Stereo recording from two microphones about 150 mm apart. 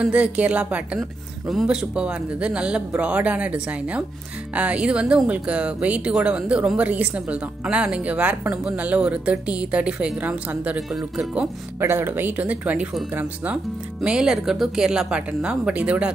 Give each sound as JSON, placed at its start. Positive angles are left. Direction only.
{"t": 0.0, "sound": "speech", "side_deg": -10}